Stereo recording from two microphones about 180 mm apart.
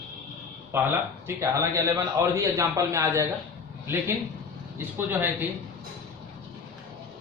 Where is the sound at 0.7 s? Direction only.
15° right (ahead or behind).